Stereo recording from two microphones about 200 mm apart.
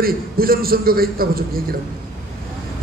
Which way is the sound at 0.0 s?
50° right (ahead or behind).